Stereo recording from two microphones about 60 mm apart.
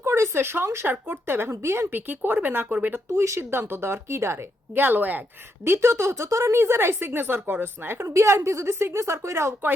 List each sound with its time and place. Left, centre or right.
0.0 s speech: right
1.9 s speech: right
3.1 s speech: right
5.6 s speech: right
8.0 s a woman's voice: right